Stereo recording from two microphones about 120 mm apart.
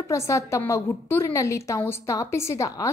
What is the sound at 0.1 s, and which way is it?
A woman's voice, 25° left (ahead or behind).